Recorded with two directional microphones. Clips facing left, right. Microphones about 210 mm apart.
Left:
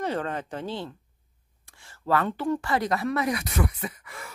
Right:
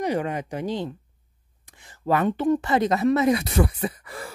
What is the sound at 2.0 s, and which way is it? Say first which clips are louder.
A woman's voice: right 4 dB; 20° right (ahead or behind).